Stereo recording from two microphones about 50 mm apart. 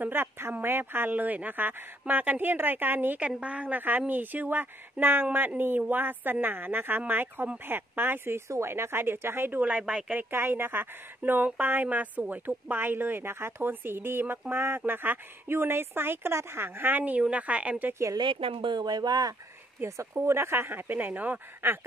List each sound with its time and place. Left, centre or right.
0.0 s a woman's voice: right
1.1 s speech: right
3.2 s a woman's voice: right
3.6 s a woman's voice: right
8.5 s a woman's voice: right
9.6 s speech: right
10.3 s a woman's voice: right
17.2 s a woman's voice: right
20.0 s speech: right
20.9 s speech: right